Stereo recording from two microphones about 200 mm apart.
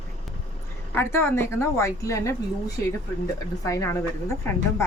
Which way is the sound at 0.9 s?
10° left (ahead or behind).